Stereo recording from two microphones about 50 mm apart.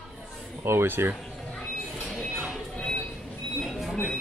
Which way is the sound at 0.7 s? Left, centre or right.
Right.